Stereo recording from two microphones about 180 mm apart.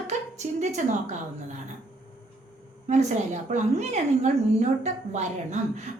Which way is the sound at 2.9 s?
40° right (ahead or behind).